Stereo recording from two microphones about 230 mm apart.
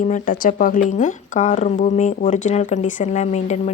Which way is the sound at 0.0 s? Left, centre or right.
Left.